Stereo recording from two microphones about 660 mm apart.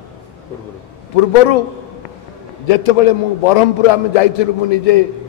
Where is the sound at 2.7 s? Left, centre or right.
Left.